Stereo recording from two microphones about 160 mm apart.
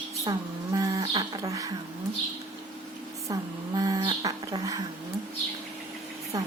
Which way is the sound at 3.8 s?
25° right (ahead or behind).